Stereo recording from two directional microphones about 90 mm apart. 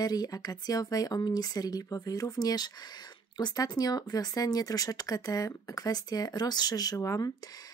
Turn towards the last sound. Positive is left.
turn(degrees=35)  # may be behind; listen again after turning